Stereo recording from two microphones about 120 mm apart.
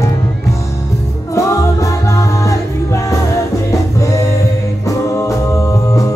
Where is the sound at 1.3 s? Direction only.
25° left (ahead or behind).